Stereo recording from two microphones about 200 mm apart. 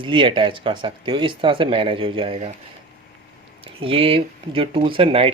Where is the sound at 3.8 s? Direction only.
25° right (ahead or behind).